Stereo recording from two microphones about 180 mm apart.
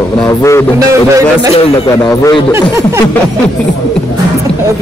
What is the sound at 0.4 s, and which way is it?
Speech, 15° left (ahead or behind).